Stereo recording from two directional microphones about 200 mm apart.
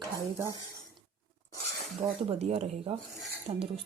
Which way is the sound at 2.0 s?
30° right (ahead or behind).